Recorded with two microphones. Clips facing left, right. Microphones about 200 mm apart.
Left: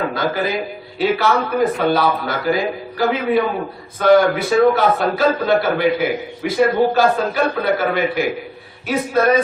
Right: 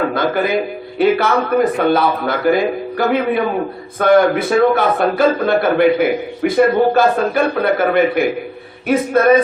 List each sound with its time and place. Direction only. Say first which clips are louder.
0.1 s a man's voice: right 4 dB; 55° right (ahead or behind)